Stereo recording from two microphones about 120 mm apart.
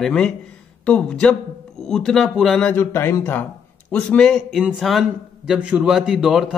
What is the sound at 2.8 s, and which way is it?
A man's voice, 20° left (ahead or behind).